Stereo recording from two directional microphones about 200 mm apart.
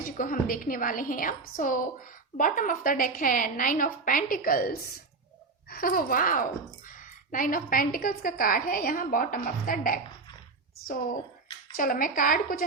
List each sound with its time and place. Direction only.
0.0 s a woman's voice: 45° left (ahead or behind)
11.8 s a woman's voice: 45° left (ahead or behind)